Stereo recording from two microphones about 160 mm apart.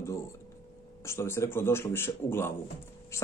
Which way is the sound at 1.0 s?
15° left (ahead or behind).